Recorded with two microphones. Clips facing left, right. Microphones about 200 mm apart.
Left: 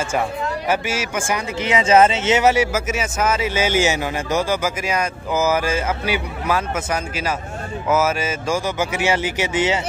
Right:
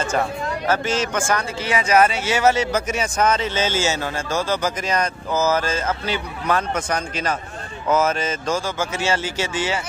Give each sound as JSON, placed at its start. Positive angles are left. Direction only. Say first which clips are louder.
{"t": 0.7, "sound": "speech", "louder": "right 2 dB", "side_deg": 10}